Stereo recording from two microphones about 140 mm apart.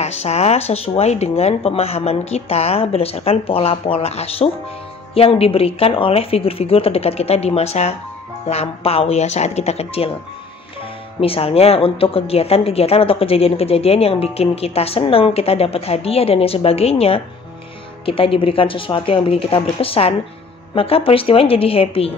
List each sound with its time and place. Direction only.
0.0 s a woman's voice: 50° left (ahead or behind)
11.1 s a woman's voice: 40° left (ahead or behind)